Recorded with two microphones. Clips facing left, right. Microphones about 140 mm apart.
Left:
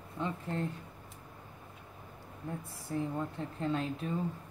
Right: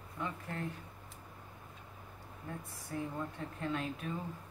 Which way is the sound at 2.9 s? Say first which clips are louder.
Left 4 dB; 25° left (ahead or behind).